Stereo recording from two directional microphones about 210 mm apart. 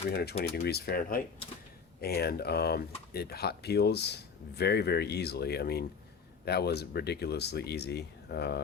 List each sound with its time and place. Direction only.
0.1 s speech: 50° left (ahead or behind)